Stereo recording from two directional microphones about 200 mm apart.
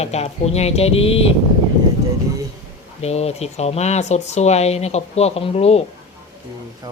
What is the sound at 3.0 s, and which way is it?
Speech, 30° left (ahead or behind).